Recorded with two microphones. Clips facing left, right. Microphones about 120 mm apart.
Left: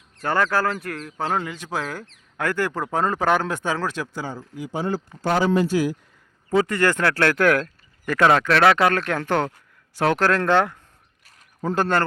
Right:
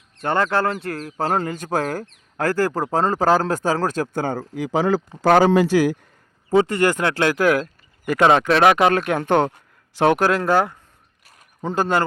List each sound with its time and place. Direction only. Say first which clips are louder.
0.2 s speech: right 2 dB; 25° right (ahead or behind); by 4.4 s 55° right (ahead or behind)
4.4 s speech: right 7 dB; 85° right
6.5 s speech: right 3 dB; 25° right (ahead or behind)
7.3 s a man's voice: right 1 dB; 5° right (ahead or behind)